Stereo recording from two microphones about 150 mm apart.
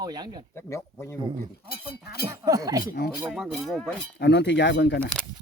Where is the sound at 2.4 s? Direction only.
20° right (ahead or behind).